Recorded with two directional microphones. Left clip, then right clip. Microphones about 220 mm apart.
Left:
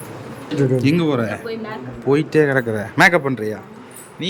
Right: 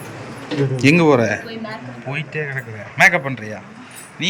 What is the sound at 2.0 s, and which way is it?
A man's voice, 25° left (ahead or behind).